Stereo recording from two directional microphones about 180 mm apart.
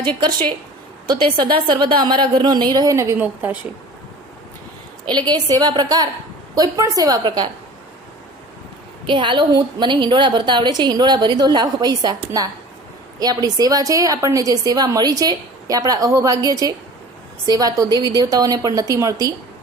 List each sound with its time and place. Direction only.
1.2 s a woman's voice: 25° right (ahead or behind); by 3.6 s 10° right (ahead or behind)
5.0 s a woman's voice: 25° right (ahead or behind)
9.0 s a woman's voice: 25° right (ahead or behind)